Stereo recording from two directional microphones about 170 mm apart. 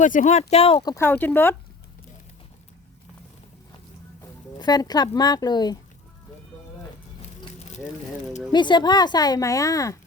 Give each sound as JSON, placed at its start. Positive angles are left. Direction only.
{"t": 0.0, "sound": "speech", "side_deg": 50}
{"t": 4.5, "sound": "speech", "side_deg": 20}
{"t": 8.5, "sound": "speech", "side_deg": 25}